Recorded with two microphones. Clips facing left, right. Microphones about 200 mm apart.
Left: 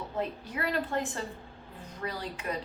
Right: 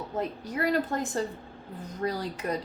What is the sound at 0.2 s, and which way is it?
A woman's voice, 40° right (ahead or behind).